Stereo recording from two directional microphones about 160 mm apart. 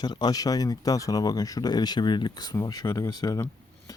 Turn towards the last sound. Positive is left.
turn(degrees=20)  # may be behind; listen again after turning